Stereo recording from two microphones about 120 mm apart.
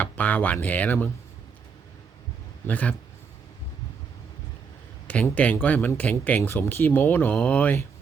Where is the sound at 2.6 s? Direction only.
10° left (ahead or behind).